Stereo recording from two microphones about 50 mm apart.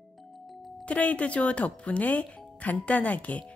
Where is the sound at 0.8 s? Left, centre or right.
Left.